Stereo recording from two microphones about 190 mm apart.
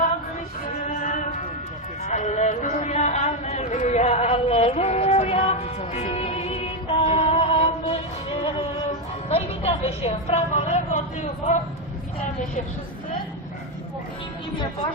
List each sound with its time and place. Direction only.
0.9 s music: 40° left (ahead or behind)
2.0 s a sound: 40° left (ahead or behind)
9.3 s a woman's voice: 30° left (ahead or behind)